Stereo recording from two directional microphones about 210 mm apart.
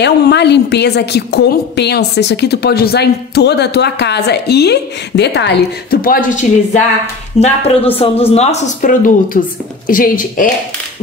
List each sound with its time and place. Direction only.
0.0 s a woman's voice: 55° left (ahead or behind)